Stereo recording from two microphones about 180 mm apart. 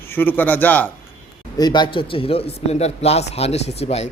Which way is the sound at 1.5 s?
25° left (ahead or behind).